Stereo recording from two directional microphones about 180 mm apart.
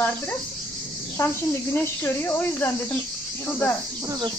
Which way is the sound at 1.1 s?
15° left (ahead or behind).